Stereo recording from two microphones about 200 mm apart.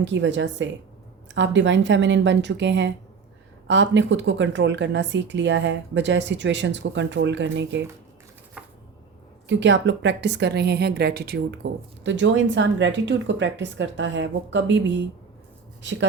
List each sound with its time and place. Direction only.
0.0 s speech: 65° right (ahead or behind)
8.6 s chopping: 5° right (ahead or behind)
9.5 s speech: 65° right (ahead or behind)
12.0 s speech: 65° right (ahead or behind)